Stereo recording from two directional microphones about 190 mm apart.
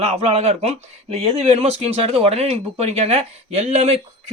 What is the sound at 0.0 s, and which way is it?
Speech, 35° right (ahead or behind).